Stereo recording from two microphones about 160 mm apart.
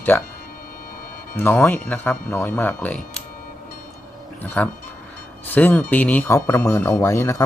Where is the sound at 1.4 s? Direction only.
10° left (ahead or behind).